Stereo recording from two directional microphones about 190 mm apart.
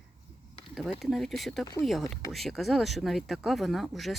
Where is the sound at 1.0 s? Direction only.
Centre (ahead or behind).